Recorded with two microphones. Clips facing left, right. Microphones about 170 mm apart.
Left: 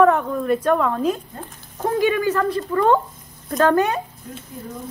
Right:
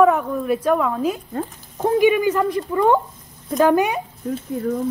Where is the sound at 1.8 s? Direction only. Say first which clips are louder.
Right 4 dB; 15° right (ahead or behind).